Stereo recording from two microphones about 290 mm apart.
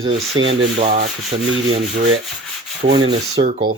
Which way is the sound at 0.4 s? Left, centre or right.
Right.